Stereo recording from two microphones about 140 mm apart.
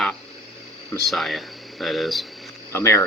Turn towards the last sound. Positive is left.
turn(degrees=20)  # may be behind; listen again after turning